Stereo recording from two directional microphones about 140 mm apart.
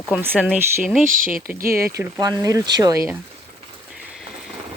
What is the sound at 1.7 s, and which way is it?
Speech, 20° right (ahead or behind).